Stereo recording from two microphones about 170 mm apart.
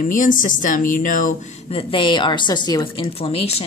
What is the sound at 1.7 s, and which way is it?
A woman's voice, 35° left (ahead or behind).